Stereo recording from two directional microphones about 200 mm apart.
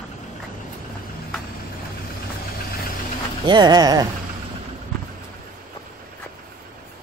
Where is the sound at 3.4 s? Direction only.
20° right (ahead or behind).